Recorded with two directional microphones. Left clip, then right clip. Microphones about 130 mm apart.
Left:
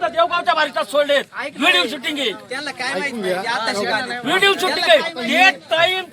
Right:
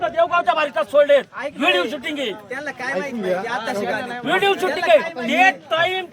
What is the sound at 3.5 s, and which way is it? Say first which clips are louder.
Speech: left 3 dB; 45° right (ahead or behind).